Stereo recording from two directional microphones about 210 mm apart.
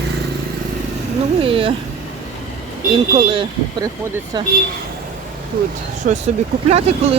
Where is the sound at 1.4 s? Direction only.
25° right (ahead or behind).